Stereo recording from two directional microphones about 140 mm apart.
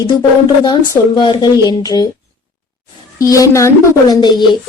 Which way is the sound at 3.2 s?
25° left (ahead or behind).